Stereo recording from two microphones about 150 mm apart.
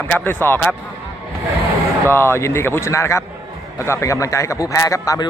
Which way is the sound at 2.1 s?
15° left (ahead or behind).